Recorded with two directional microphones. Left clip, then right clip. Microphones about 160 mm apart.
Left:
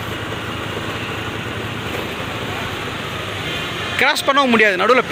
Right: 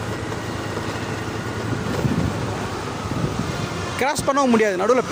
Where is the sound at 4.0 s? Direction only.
15° right (ahead or behind).